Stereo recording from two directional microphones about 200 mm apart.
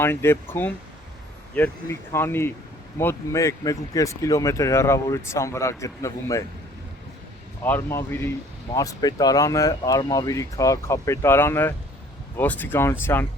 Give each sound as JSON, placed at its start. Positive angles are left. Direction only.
{"t": 0.0, "sound": "speech", "side_deg": 10}
{"t": 7.6, "sound": "speech", "side_deg": 10}